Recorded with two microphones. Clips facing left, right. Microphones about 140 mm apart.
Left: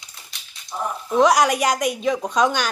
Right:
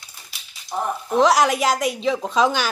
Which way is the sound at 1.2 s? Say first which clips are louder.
Even; centre (ahead or behind).